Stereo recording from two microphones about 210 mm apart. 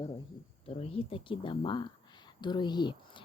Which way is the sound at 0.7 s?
30° left (ahead or behind).